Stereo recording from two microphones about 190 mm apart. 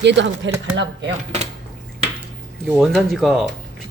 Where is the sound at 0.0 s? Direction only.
65° right (ahead or behind).